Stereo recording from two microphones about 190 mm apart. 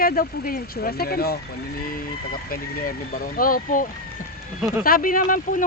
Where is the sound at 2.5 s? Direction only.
50° left (ahead or behind).